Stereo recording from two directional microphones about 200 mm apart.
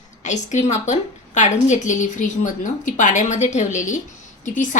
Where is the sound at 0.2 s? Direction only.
35° left (ahead or behind).